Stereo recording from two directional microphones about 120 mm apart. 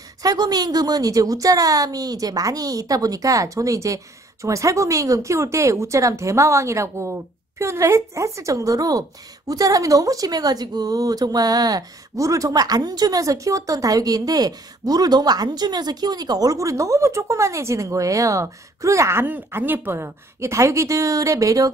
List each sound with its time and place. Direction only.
0.2 s speech: 35° right (ahead or behind)